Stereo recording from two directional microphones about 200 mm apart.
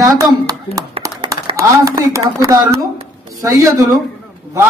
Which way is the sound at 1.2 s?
25° right (ahead or behind).